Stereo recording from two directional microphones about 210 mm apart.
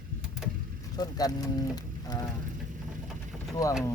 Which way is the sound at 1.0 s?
20° left (ahead or behind).